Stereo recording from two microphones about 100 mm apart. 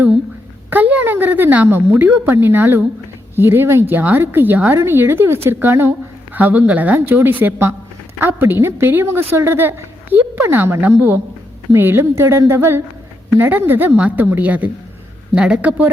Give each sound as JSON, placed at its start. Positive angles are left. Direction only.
{"t": 0.7, "sound": "a woman's voice", "side_deg": -15}